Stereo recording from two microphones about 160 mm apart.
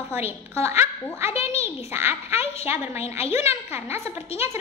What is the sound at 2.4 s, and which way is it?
Speech, 40° left (ahead or behind).